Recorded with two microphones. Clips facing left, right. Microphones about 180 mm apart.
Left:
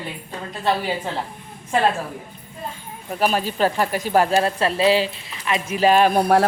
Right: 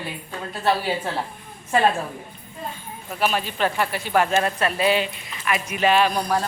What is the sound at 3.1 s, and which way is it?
Speech, 40° left (ahead or behind).